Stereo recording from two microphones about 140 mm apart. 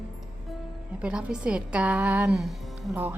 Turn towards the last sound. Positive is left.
turn(degrees=-15)  # may be behind; listen again after turning